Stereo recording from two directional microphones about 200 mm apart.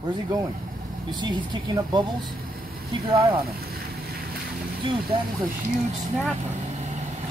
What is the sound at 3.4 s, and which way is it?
Boat, 50° right (ahead or behind).